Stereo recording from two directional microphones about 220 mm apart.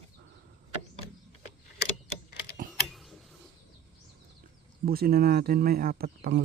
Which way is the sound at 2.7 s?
Centre (ahead or behind).